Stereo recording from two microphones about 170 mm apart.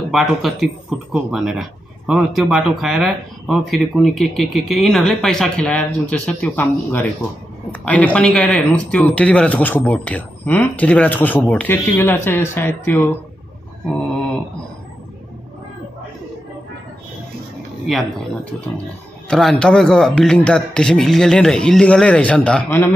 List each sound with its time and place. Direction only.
0.1 s speech: centre (ahead or behind)
17.8 s speech: centre (ahead or behind)